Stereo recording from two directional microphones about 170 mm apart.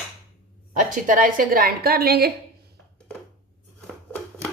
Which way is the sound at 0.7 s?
50° right (ahead or behind).